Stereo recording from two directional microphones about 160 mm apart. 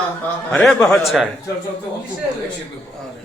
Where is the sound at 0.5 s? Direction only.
5° left (ahead or behind).